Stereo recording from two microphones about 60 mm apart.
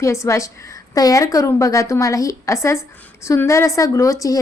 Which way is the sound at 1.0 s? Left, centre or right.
Left.